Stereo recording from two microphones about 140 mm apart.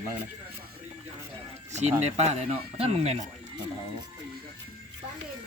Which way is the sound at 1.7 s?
55° right (ahead or behind).